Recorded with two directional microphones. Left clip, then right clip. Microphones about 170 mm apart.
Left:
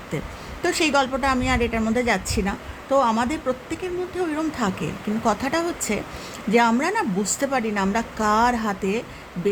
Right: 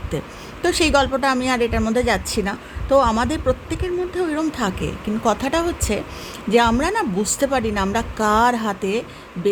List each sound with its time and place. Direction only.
0.6 s a woman's voice: 15° right (ahead or behind)